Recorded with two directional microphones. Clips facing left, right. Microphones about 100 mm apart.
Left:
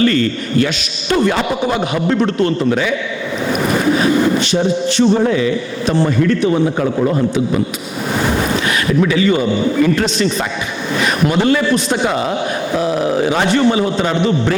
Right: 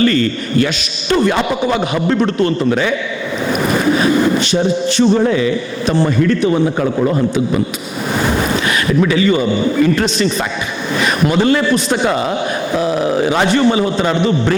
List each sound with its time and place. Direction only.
0.0 s a man's voice: 20° right (ahead or behind)
3.7 s a sound: 20° right (ahead or behind)
6.0 s a man's voice: 20° right (ahead or behind)
6.6 s a man's voice: 35° right (ahead or behind)
8.2 s a man's voice: 25° right (ahead or behind)
13.1 s a man's voice: 25° right (ahead or behind)